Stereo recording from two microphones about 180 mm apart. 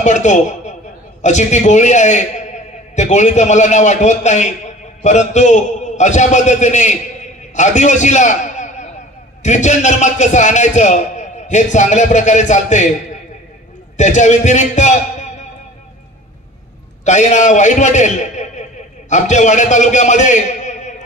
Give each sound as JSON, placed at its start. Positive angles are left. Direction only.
{"t": 0.0, "sound": "a man's voice", "side_deg": 40}
{"t": 13.9, "sound": "a man's voice", "side_deg": 40}
{"t": 17.0, "sound": "a man's voice", "side_deg": 40}